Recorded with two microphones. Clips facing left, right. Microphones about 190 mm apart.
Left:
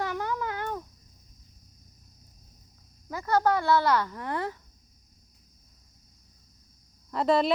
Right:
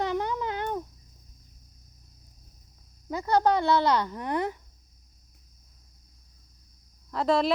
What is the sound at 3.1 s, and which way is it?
A woman's voice, 20° right (ahead or behind).